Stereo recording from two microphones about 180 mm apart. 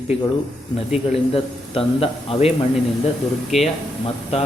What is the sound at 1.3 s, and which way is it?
A man's voice, 30° left (ahead or behind).